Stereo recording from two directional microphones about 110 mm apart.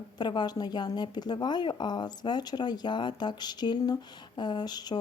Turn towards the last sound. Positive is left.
turn(degrees=40)  # may be behind; listen again after turning